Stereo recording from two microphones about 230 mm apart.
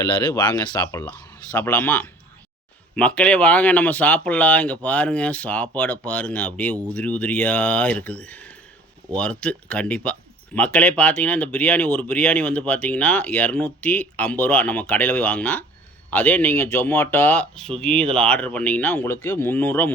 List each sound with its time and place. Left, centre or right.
0.0 s speech: centre